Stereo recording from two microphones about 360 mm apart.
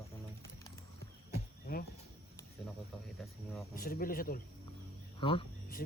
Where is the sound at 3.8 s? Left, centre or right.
Left.